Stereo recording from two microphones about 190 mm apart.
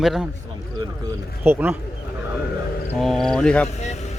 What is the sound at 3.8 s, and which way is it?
Speech, 35° left (ahead or behind).